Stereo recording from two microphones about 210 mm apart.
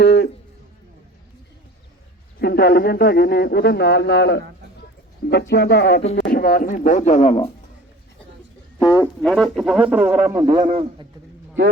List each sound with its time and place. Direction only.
0.0 s a sound: 50° left (ahead or behind)
2.4 s speech: 50° left (ahead or behind); by 7.5 s 30° left (ahead or behind)
8.8 s speech: 15° left (ahead or behind)
9.2 s a man's voice: centre (ahead or behind); by 10.7 s 15° right (ahead or behind)